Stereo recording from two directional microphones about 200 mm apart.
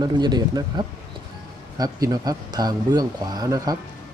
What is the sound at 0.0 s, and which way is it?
Speech, 20° right (ahead or behind).